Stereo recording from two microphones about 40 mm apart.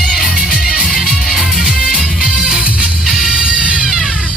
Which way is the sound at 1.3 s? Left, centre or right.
Centre.